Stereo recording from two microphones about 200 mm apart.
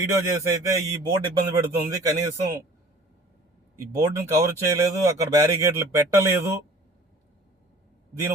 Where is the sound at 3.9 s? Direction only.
15° right (ahead or behind).